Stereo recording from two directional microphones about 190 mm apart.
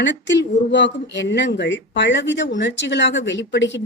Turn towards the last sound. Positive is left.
turn(degrees=70)  # may be behind; listen again after turning